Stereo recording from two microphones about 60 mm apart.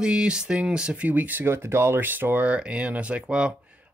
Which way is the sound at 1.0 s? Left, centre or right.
Right.